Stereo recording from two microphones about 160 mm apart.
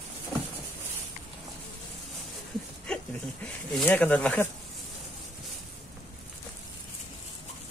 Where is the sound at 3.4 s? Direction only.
10° left (ahead or behind).